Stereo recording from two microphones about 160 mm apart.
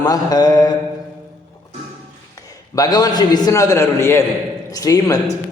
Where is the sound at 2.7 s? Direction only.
25° left (ahead or behind).